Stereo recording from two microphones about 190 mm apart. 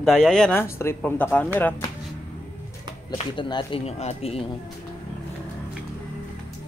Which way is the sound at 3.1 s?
25° left (ahead or behind).